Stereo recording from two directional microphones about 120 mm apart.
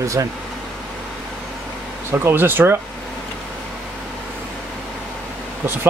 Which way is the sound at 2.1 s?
20° right (ahead or behind).